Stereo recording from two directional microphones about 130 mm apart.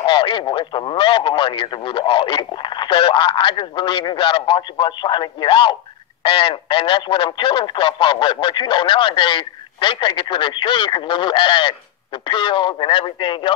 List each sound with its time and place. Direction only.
0.0 s speech: 40° left (ahead or behind)